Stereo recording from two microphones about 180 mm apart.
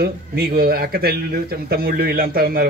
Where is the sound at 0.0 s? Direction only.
55° right (ahead or behind).